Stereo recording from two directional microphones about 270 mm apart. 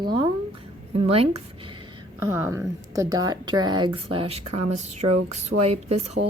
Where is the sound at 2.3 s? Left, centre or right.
Centre.